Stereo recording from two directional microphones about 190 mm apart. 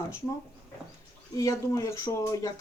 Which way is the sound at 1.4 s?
15° left (ahead or behind).